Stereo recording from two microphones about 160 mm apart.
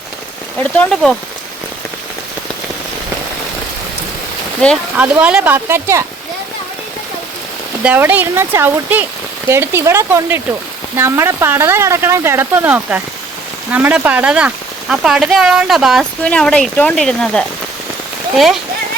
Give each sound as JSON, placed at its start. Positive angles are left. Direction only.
{"t": 0.6, "sound": "speech", "side_deg": 5}
{"t": 4.6, "sound": "speech", "side_deg": 5}
{"t": 4.9, "sound": "speech", "side_deg": -10}
{"t": 7.9, "sound": "speech", "side_deg": -10}